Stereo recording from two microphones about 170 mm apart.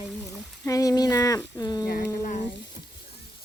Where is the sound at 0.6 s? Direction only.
20° left (ahead or behind).